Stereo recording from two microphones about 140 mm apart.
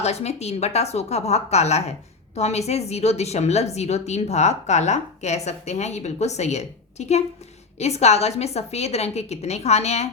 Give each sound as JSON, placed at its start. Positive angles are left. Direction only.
{"t": 0.0, "sound": "a woman's voice", "side_deg": 50}